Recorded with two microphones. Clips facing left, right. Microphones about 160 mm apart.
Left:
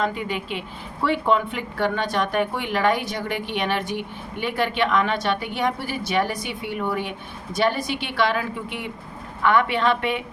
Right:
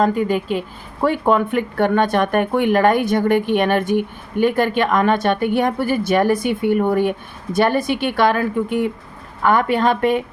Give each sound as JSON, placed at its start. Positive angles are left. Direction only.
{"t": 0.0, "sound": "speech", "side_deg": -45}